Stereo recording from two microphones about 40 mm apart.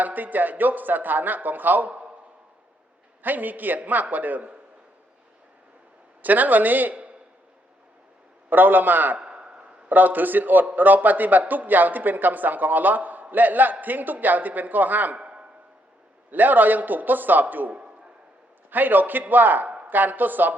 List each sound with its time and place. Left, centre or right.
0.0 s speech: right
3.2 s speech: right
6.2 s speech: right
8.4 s speech: right
9.1 s a sound: right
9.9 s speech: right
15.2 s a sound: right
16.3 s speech: right
17.7 s a sound: right
18.7 s speech: right